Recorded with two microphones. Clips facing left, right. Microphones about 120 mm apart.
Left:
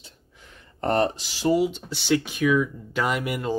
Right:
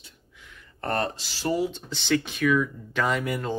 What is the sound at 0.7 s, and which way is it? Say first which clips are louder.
Speech: left 5 dB; 20° left (ahead or behind).